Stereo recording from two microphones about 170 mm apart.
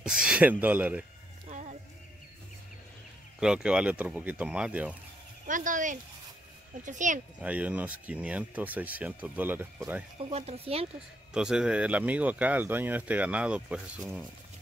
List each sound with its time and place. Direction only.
0.0 s speech: 5° right (ahead or behind)
1.5 s music: 45° right (ahead or behind)
3.3 s speech: 5° right (ahead or behind)
5.5 s speech: 50° right (ahead or behind)
7.3 s speech: 10° right (ahead or behind)
10.1 s speech: 35° right (ahead or behind)
11.3 s speech: 5° right (ahead or behind)